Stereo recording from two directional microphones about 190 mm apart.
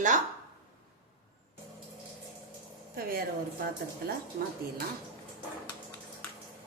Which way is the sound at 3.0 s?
50° right (ahead or behind).